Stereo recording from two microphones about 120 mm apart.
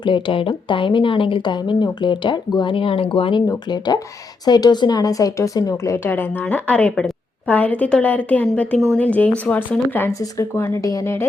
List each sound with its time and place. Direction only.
0.0 s speech: 45° left (ahead or behind)
3.4 s a woman's voice: 35° left (ahead or behind)